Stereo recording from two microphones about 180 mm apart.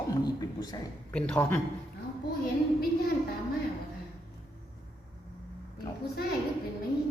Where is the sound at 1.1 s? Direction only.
10° left (ahead or behind).